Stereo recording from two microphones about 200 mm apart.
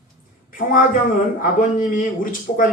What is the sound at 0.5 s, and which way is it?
Speech, 45° left (ahead or behind).